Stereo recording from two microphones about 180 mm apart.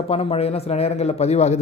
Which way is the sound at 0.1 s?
30° left (ahead or behind).